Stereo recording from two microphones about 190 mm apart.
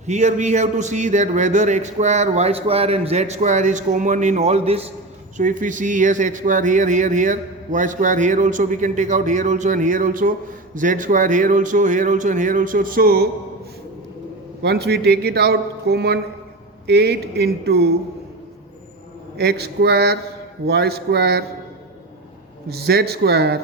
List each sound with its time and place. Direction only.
0.0 s speech: 35° right (ahead or behind)
5.4 s speech: 45° right (ahead or behind)
14.6 s a man's voice: 60° right (ahead or behind)
19.4 s a man's voice: 55° right (ahead or behind)
22.7 s a man's voice: 55° right (ahead or behind)